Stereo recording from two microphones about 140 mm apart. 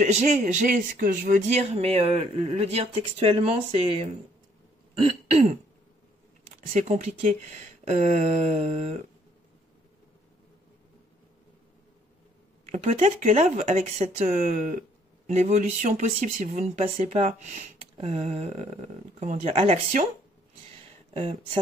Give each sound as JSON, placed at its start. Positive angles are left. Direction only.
{"t": 0.0, "sound": "speech", "side_deg": -55}
{"t": 1.5, "sound": "speech", "side_deg": -50}
{"t": 6.7, "sound": "speech", "side_deg": -50}
{"t": 12.7, "sound": "speech", "side_deg": -55}
{"t": 14.3, "sound": "speech", "side_deg": -65}
{"t": 21.1, "sound": "speech", "side_deg": -45}